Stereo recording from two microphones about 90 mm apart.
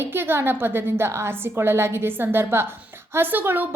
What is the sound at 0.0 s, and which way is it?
A woman's voice, 25° right (ahead or behind).